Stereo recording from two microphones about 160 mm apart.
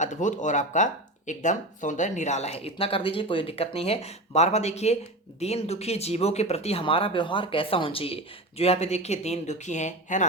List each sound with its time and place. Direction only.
0.0 s speech: 50° left (ahead or behind)